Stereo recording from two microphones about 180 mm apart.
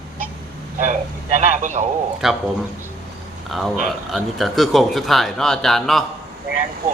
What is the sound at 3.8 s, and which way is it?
Speech, centre (ahead or behind).